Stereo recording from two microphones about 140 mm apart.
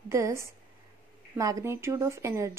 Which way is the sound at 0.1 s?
20° right (ahead or behind).